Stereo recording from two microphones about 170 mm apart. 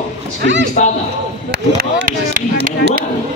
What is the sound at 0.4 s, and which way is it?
Speech, 90° right.